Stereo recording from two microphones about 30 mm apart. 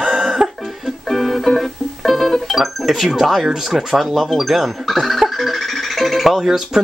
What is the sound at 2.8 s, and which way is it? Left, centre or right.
Speech, centre.